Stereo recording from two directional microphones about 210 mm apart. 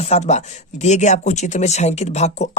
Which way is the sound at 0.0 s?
30° left (ahead or behind).